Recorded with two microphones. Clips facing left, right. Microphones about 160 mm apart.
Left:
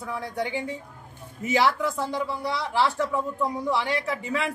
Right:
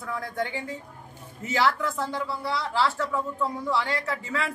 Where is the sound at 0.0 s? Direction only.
15° left (ahead or behind).